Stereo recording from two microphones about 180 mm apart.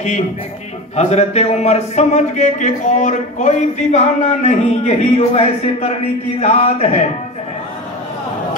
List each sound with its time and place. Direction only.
0.9 s speech: 35° left (ahead or behind)